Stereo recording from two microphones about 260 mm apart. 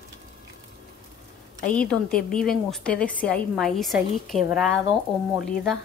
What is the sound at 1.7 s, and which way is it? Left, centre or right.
A woman's voice, centre.